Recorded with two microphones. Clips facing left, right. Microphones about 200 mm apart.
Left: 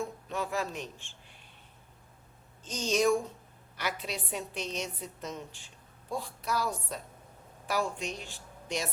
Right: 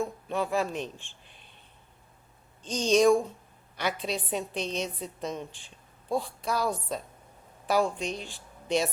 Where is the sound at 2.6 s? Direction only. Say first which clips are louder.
Right 6 dB; 30° right (ahead or behind).